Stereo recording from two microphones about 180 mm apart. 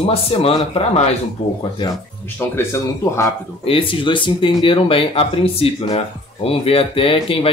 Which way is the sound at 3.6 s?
30° left (ahead or behind).